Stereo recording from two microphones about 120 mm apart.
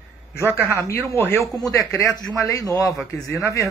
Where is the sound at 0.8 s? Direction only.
20° left (ahead or behind).